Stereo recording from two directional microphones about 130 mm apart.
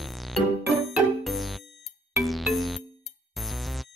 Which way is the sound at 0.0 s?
Centre (ahead or behind).